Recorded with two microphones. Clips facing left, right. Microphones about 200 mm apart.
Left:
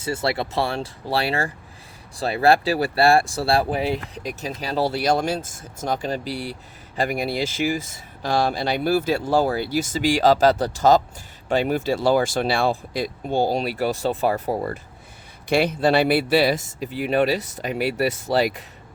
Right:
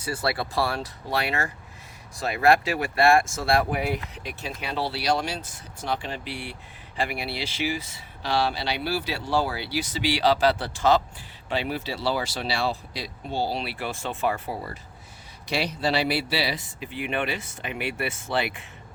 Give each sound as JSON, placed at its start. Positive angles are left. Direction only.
{"t": 0.0, "sound": "speech", "side_deg": 25}
{"t": 4.0, "sound": "speech", "side_deg": 40}